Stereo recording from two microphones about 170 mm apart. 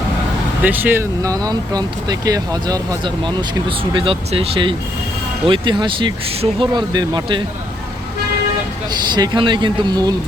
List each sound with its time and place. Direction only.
0.6 s speech: 10° right (ahead or behind); by 7.4 s 25° right (ahead or behind)
8.9 s speech: 25° right (ahead or behind)